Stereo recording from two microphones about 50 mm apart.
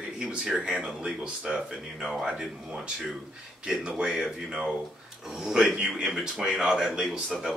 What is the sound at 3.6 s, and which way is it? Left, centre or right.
Speech, right.